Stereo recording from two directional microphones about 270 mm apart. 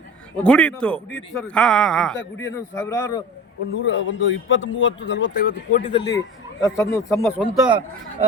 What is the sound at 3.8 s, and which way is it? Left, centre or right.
Speech, left.